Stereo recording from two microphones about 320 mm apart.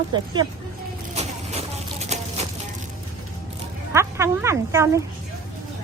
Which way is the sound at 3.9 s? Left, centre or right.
Centre.